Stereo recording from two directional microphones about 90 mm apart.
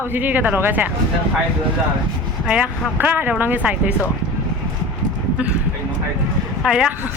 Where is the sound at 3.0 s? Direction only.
20° right (ahead or behind).